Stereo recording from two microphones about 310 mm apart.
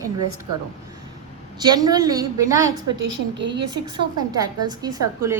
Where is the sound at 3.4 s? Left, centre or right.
Right.